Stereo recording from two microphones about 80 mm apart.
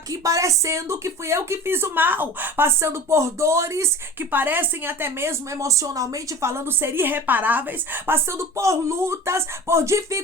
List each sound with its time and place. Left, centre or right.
0.1 s speech: right
4.3 s a woman's voice: right
5.5 s speech: right